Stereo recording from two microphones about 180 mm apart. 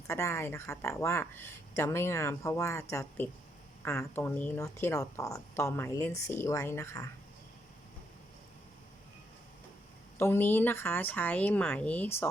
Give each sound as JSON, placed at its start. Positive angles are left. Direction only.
{"t": 0.1, "sound": "speech", "side_deg": 15}
{"t": 10.2, "sound": "speech", "side_deg": 10}